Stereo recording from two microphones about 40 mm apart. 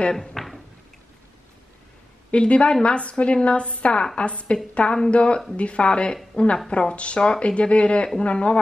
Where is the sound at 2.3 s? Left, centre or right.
Left.